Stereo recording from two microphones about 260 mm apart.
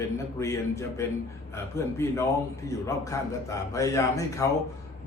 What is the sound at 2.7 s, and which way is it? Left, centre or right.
A man's voice, centre.